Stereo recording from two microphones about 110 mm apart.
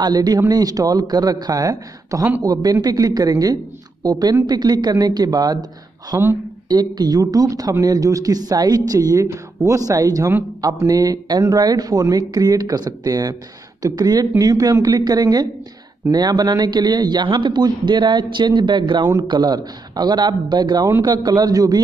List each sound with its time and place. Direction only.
0.0 s a man's voice: 35° right (ahead or behind)